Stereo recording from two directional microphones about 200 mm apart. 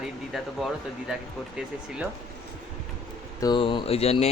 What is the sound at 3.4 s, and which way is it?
Speech, 20° left (ahead or behind).